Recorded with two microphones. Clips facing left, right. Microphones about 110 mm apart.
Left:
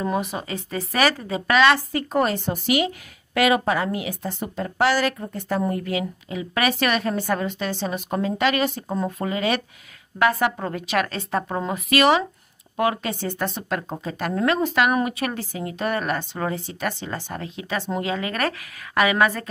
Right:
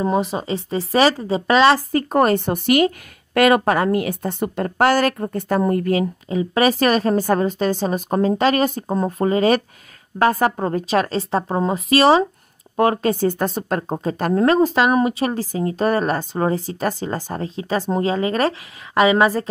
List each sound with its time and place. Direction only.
0.0 s a woman's voice: 30° right (ahead or behind)
1.9 s a woman's voice: 45° right (ahead or behind); by 19.5 s 30° right (ahead or behind)